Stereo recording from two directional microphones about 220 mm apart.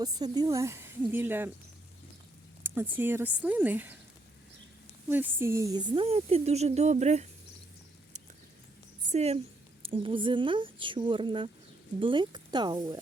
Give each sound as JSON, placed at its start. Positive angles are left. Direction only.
{"t": 0.0, "sound": "a woman's voice", "side_deg": -20}
{"t": 2.6, "sound": "a woman's voice", "side_deg": -10}
{"t": 5.0, "sound": "speech", "side_deg": -10}
{"t": 9.1, "sound": "speech", "side_deg": -30}